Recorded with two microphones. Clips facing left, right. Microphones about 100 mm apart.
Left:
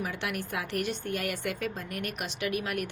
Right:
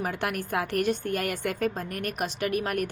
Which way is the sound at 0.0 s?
50° right (ahead or behind).